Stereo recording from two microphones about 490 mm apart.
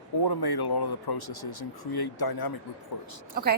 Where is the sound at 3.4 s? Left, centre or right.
Centre.